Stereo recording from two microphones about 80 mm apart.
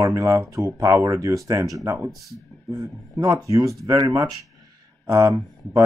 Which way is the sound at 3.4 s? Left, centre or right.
Right.